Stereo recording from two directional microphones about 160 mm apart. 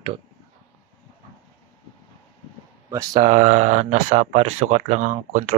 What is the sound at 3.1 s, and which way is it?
Speech, 45° right (ahead or behind).